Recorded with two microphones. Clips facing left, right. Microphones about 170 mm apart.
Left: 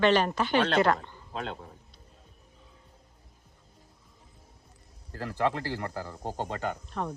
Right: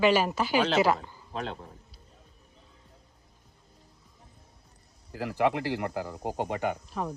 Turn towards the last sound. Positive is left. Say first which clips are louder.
# even
turn(degrees=-5)  # may be behind; listen again after turning